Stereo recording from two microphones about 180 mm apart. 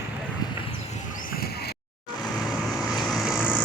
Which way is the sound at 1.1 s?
55° left (ahead or behind).